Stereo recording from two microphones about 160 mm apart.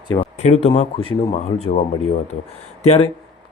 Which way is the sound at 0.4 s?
40° left (ahead or behind).